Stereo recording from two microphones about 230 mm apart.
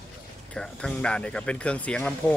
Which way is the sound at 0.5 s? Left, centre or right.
Centre.